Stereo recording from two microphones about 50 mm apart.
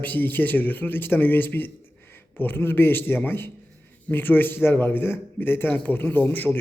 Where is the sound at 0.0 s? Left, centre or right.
Left.